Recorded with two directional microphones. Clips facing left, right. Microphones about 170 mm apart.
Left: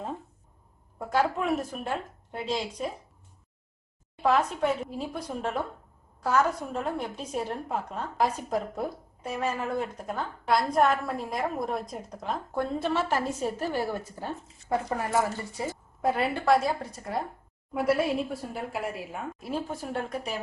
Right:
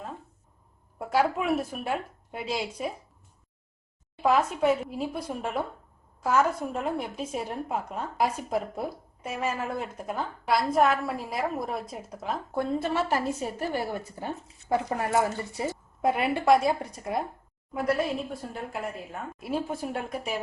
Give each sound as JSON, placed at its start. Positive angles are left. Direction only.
{"t": 0.9, "sound": "a woman's voice", "side_deg": -10}
{"t": 4.2, "sound": "a woman's voice", "side_deg": -5}
{"t": 17.7, "sound": "a woman's voice", "side_deg": 5}
{"t": 19.4, "sound": "a woman's voice", "side_deg": -10}